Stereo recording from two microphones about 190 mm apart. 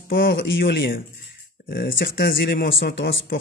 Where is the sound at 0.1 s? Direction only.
70° left (ahead or behind).